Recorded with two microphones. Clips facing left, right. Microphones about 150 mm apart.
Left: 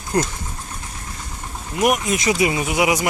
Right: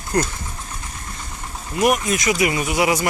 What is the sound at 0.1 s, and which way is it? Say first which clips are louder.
Speech: even; 25° left (ahead or behind).